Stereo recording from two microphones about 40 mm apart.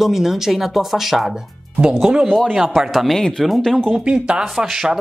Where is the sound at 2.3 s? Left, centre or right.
Centre.